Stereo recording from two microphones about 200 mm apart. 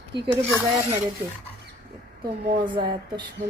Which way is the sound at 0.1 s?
60° right (ahead or behind).